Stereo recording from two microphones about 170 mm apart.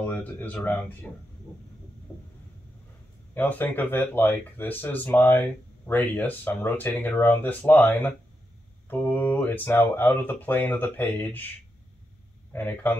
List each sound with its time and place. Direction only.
0.0 s speech: 10° left (ahead or behind)
3.3 s speech: 10° left (ahead or behind)
8.8 s mantra: 10° left (ahead or behind)
9.9 s speech: 10° left (ahead or behind)
12.5 s speech: 10° left (ahead or behind)